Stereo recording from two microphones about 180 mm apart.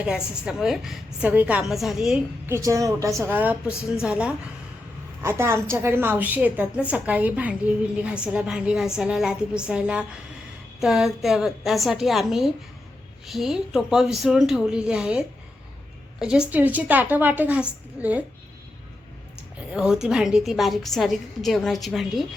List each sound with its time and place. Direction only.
0.0 s a woman's voice: 5° right (ahead or behind)
2.5 s a woman's voice: 15° right (ahead or behind)
19.7 s a woman's voice: 5° right (ahead or behind)